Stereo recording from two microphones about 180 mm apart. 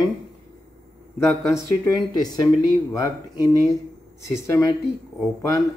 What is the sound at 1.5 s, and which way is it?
Speech, 20° left (ahead or behind).